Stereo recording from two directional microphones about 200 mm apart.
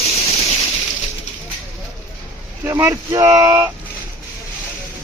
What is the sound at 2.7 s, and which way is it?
Speech, 10° right (ahead or behind).